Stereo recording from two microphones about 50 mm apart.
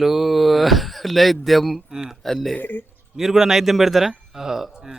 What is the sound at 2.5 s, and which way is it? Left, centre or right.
Speech, left.